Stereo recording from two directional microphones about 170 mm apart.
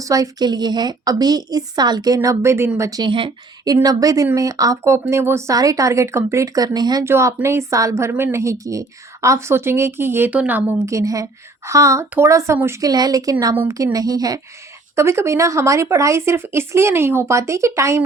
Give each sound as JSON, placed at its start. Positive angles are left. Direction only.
{"t": 0.0, "sound": "a woman's voice", "side_deg": -20}